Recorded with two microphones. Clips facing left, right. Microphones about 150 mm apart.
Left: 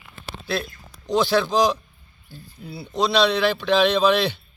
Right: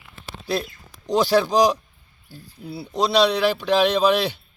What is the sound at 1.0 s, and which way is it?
Speech, 35° right (ahead or behind).